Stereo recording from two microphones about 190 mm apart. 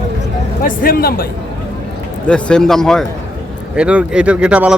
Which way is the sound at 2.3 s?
5° left (ahead or behind).